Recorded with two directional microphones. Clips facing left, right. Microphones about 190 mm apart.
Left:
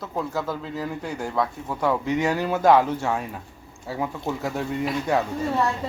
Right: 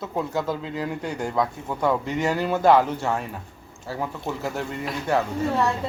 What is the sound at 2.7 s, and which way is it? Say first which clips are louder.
Speech: even; 10° right (ahead or behind).